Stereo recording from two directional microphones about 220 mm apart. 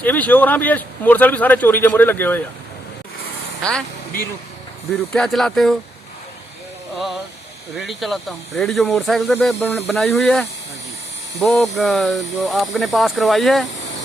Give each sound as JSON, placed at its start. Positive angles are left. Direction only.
{"t": 0.0, "sound": "speech", "side_deg": 5}
{"t": 3.6, "sound": "speech", "side_deg": 5}
{"t": 5.1, "sound": "speech", "side_deg": 0}
{"t": 6.9, "sound": "a sound", "side_deg": 0}
{"t": 7.8, "sound": "speech", "side_deg": 0}